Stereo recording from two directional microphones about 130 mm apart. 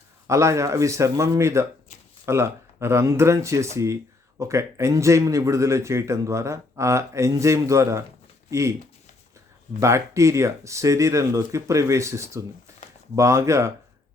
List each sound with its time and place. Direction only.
0.3 s speech: 25° right (ahead or behind)
9.8 s speech: 25° right (ahead or behind)